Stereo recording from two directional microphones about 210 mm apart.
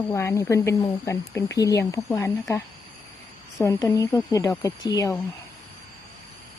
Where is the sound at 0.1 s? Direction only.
15° left (ahead or behind).